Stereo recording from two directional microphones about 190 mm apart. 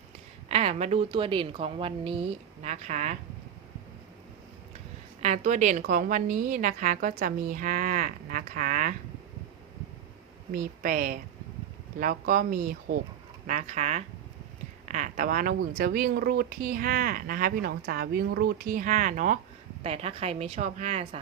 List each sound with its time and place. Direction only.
0.4 s speech: 35° right (ahead or behind)
5.2 s speech: 40° right (ahead or behind)
10.5 s speech: 45° right (ahead or behind)